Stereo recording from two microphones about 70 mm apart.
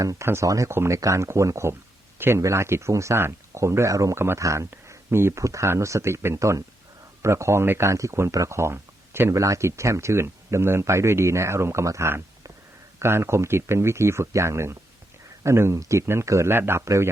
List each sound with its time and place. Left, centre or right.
0.0 s speech: right
2.1 s speech: right
7.9 s speech: right
9.3 s speech: right